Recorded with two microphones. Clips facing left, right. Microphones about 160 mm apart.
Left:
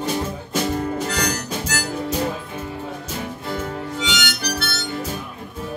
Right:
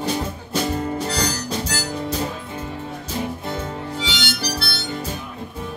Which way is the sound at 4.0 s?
35° right (ahead or behind).